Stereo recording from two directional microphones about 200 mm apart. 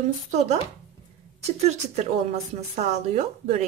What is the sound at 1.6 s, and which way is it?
A woman's voice, 35° right (ahead or behind).